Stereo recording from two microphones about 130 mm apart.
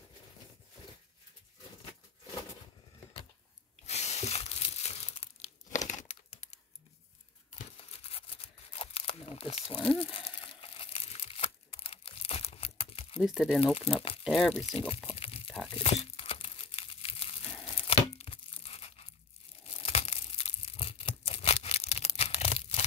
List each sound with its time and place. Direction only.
3.8 s crumpling: 55° left (ahead or behind)
5.9 s crumpling: 70° left (ahead or behind)
7.9 s a sound: 50° left (ahead or behind)
13.2 s speech: 5° right (ahead or behind)
13.7 s speech: 45° left (ahead or behind)
14.2 s speech: centre (ahead or behind)
14.6 s speech: 50° left (ahead or behind)
15.0 s crumpling: 45° left (ahead or behind)
15.4 s tearing: centre (ahead or behind)
15.7 s crumpling: 50° left (ahead or behind)
17.6 s tearing: 50° left (ahead or behind)